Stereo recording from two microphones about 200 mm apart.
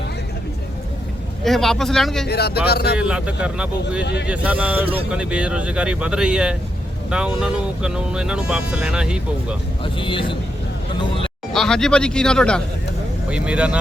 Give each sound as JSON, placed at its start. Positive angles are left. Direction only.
{"t": 1.5, "sound": "speech", "side_deg": 0}
{"t": 2.2, "sound": "speech", "side_deg": 55}
{"t": 3.0, "sound": "speech", "side_deg": -5}
{"t": 9.8, "sound": "speech", "side_deg": 25}
{"t": 11.5, "sound": "speech", "side_deg": 0}